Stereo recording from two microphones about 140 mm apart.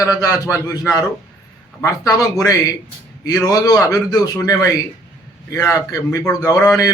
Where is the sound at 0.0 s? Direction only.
25° left (ahead or behind).